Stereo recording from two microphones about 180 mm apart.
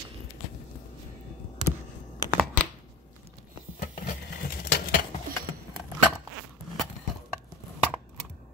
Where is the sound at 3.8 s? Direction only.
55° left (ahead or behind).